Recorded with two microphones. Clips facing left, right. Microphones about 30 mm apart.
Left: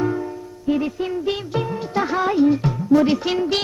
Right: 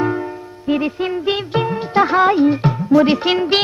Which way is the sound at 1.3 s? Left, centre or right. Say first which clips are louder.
Right 5 dB; right.